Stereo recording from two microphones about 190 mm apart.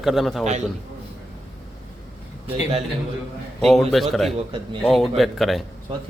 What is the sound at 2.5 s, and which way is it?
Speech, 30° right (ahead or behind).